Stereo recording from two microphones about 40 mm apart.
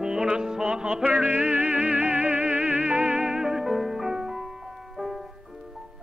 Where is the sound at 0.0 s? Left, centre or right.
Centre.